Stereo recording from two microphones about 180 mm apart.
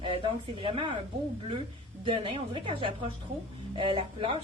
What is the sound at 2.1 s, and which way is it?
A woman's voice, 30° right (ahead or behind).